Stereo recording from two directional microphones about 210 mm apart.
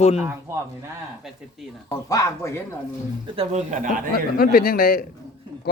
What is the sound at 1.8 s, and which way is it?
Speech, 15° left (ahead or behind).